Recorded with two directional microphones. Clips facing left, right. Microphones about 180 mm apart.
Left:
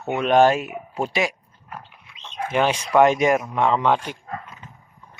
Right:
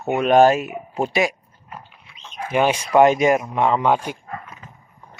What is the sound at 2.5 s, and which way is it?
Speech, 10° right (ahead or behind).